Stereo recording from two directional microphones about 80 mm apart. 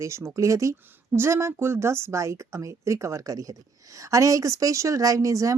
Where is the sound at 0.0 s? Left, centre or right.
Right.